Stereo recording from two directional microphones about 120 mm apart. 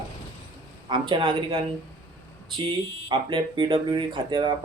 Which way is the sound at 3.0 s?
40° right (ahead or behind).